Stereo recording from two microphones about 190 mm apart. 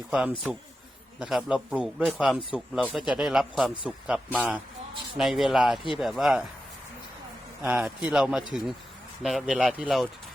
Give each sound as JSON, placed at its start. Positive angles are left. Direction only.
{"t": 0.1, "sound": "speech", "side_deg": -5}
{"t": 7.6, "sound": "speech", "side_deg": -5}